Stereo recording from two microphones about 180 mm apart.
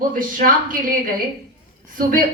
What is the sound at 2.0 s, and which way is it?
Speech, 50° right (ahead or behind).